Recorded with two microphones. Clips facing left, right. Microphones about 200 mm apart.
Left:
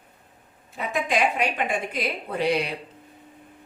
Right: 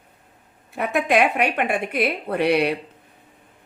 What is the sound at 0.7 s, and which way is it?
Speech, 65° right (ahead or behind).